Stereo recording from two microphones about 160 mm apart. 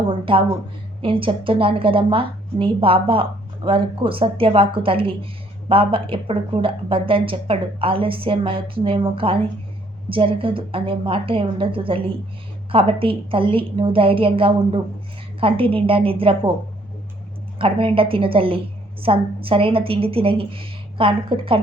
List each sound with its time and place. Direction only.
1.0 s a woman's voice: 35° right (ahead or behind)
17.6 s a woman's voice: 35° right (ahead or behind)